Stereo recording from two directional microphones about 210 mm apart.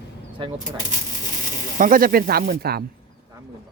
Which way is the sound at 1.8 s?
40° right (ahead or behind).